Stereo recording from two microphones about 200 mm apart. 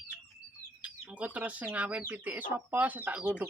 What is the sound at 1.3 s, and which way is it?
Speech, 5° right (ahead or behind).